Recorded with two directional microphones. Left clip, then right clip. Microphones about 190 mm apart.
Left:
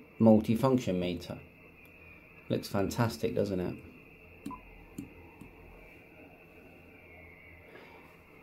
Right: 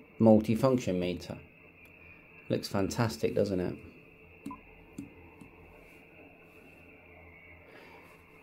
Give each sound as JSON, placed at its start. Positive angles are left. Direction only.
{"t": 0.2, "sound": "speech", "side_deg": -15}
{"t": 2.4, "sound": "speech", "side_deg": -15}